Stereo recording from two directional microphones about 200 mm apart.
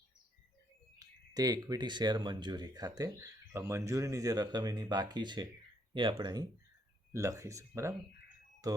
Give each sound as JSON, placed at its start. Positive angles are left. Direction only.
{"t": 0.9, "sound": "speech", "side_deg": -20}